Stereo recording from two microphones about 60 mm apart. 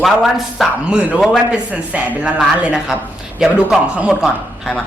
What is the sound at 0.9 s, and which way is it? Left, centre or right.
A woman's voice, centre.